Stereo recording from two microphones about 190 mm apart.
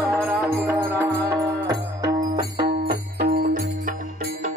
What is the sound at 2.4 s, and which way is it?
Music, 55° right (ahead or behind).